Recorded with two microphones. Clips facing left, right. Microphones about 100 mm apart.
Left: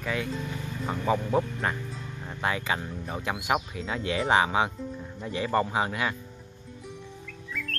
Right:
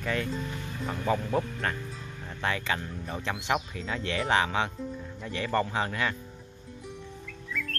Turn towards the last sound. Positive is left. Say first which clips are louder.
# right 1 dB
turn(degrees=0)  # may be behind; listen again after turning